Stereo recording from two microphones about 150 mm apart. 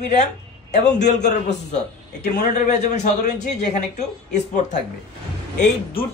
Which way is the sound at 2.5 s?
55° left (ahead or behind).